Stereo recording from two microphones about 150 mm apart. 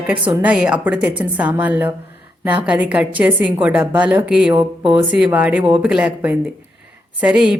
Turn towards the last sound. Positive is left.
turn(degrees=-5)  # may be behind; listen again after turning